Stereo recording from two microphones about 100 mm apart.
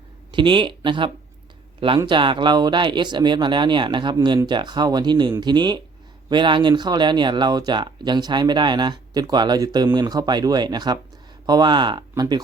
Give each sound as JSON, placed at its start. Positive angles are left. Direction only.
{"t": 0.3, "sound": "speech", "side_deg": -55}